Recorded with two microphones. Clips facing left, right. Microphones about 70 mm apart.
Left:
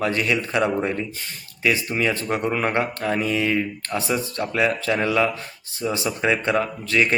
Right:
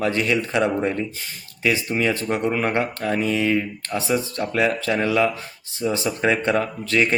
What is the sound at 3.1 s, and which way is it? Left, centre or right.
Speech, right.